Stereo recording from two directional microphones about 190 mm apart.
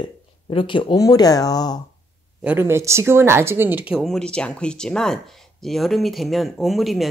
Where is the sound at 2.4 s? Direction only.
10° right (ahead or behind).